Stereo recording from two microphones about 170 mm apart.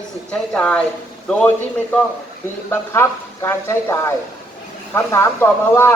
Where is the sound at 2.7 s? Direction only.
15° left (ahead or behind).